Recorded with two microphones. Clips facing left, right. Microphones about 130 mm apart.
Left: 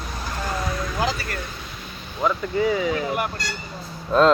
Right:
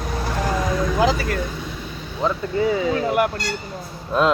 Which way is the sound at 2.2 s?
25° right (ahead or behind).